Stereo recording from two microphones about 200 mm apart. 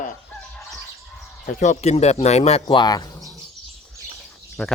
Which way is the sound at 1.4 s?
35° left (ahead or behind).